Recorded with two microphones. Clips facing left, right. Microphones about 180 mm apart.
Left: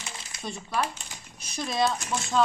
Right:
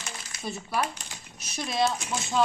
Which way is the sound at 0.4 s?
10° right (ahead or behind).